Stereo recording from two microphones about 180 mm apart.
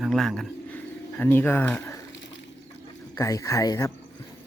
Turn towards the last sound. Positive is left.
turn(degrees=20)  # may be behind; listen again after turning